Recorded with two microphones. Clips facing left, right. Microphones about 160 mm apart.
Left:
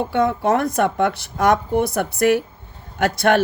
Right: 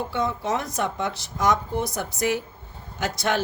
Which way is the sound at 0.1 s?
60° left (ahead or behind).